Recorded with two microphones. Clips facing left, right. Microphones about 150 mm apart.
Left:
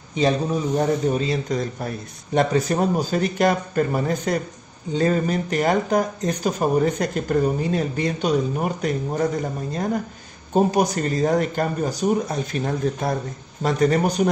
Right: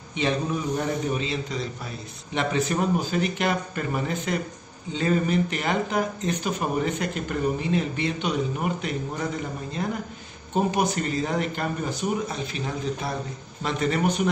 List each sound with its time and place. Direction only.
0.7 s speech: 40° left (ahead or behind)